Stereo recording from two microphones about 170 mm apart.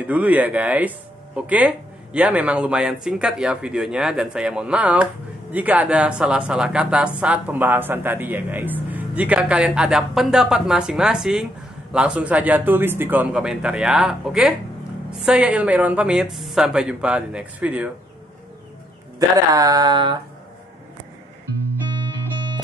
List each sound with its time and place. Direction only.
0.0 s a woman's voice: 10° right (ahead or behind)
19.1 s speech: 20° right (ahead or behind)